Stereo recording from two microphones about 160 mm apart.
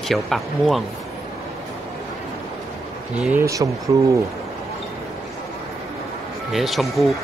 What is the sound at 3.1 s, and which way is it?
Speech, 5° right (ahead or behind).